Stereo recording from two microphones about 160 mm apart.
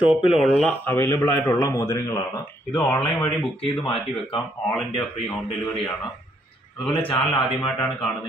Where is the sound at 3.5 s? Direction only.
30° left (ahead or behind).